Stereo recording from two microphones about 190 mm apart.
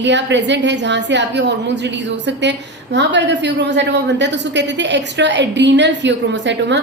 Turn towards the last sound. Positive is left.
turn(degrees=-70)  # may be behind; listen again after turning